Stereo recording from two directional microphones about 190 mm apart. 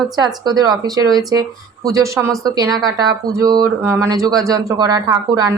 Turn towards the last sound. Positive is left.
turn(degrees=-20)  # may be behind; listen again after turning